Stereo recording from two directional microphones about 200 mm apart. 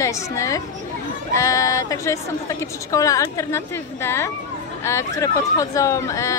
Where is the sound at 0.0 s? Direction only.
15° left (ahead or behind).